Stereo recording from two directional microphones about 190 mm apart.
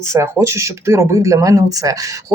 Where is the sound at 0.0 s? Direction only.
15° right (ahead or behind).